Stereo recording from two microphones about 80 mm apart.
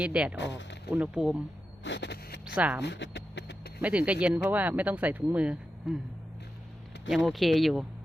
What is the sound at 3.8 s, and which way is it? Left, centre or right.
Speech, centre.